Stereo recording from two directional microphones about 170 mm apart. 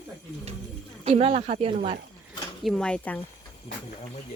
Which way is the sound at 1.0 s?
35° right (ahead or behind).